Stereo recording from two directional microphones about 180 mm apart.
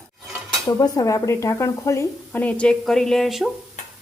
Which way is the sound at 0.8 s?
20° left (ahead or behind).